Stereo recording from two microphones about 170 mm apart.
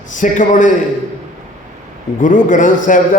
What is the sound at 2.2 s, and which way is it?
Speech, 50° left (ahead or behind).